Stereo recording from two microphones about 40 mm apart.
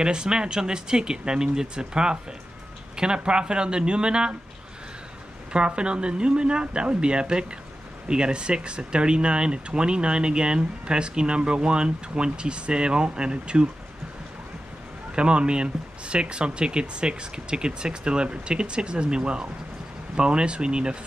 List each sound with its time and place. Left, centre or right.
0.0 s speech: right
5.5 s speech: right
15.1 s speech: right